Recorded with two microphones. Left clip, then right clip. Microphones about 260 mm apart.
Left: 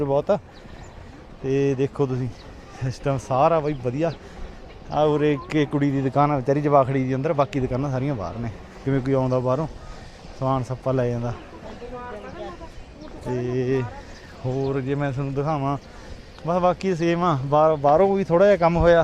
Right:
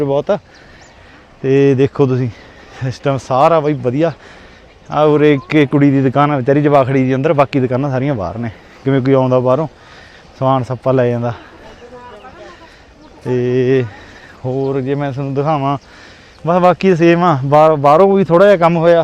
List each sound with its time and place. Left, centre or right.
0.0 s a man's voice: right
1.5 s a man's voice: right
13.3 s a man's voice: right